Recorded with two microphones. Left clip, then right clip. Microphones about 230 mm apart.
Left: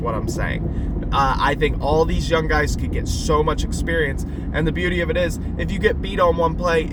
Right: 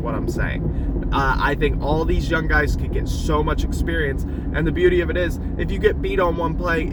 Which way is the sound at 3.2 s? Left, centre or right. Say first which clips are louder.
Left 3 dB; centre.